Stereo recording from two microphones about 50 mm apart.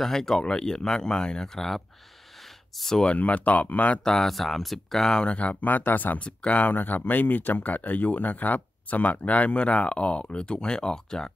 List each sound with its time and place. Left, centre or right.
0.0 s speech: centre
2.8 s speech: centre
3.1 s speech: left
4.0 s speech: centre
5.2 s speech: left
6.1 s speech: left